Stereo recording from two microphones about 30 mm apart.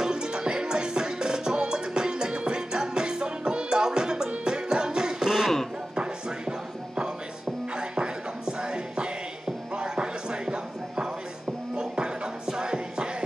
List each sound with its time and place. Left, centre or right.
0.0 s music: right
5.9 s music: right
7.7 s music: right